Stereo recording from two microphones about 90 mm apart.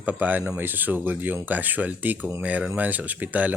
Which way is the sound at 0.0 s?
20° right (ahead or behind).